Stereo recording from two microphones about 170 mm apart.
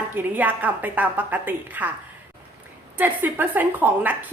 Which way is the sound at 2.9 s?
10° right (ahead or behind).